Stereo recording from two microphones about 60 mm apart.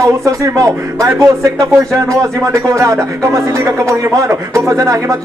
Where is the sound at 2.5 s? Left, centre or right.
Right.